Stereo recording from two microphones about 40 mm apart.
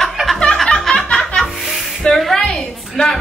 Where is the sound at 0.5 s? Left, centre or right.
Centre.